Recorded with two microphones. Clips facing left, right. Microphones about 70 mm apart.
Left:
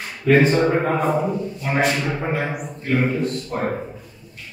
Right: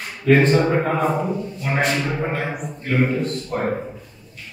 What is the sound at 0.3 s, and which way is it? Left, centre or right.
A man's voice, centre.